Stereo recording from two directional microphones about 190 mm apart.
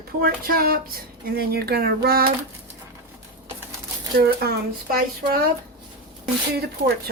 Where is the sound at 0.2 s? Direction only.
50° right (ahead or behind).